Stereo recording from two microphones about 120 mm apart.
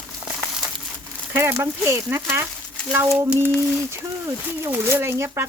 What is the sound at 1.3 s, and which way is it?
Speech, 20° right (ahead or behind).